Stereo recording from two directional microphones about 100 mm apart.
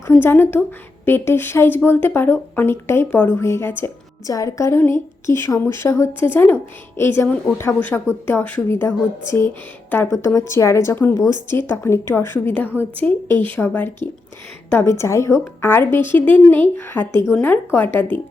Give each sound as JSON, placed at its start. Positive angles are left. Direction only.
{"t": 0.1, "sound": "speech", "side_deg": 20}
{"t": 4.3, "sound": "a woman's voice", "side_deg": 35}